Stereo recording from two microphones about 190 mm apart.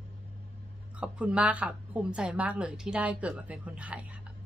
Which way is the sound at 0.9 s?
5° right (ahead or behind).